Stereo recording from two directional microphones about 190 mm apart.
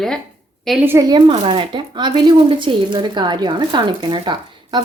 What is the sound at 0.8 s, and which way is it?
Speech, 15° right (ahead or behind).